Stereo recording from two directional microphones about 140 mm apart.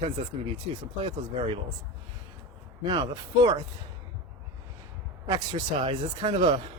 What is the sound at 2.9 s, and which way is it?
Speech, 30° right (ahead or behind).